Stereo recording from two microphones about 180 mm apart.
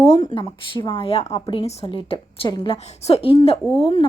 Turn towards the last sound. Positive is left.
turn(degrees=30)  # may be behind; listen again after turning